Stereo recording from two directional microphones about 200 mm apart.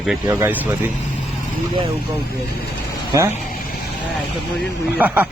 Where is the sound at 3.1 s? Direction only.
15° right (ahead or behind).